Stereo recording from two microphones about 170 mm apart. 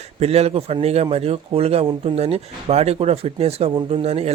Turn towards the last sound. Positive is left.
turn(degrees=-35)  # may be behind; listen again after turning